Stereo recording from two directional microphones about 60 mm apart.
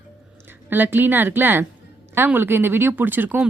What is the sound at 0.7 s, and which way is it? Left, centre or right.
A woman's voice, right.